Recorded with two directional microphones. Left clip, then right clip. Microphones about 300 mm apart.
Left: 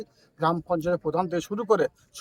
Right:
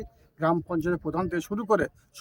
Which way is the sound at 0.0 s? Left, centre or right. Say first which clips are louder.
Left 2 dB; centre.